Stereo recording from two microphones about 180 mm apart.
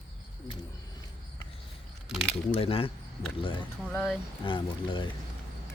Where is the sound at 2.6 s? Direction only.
30° left (ahead or behind).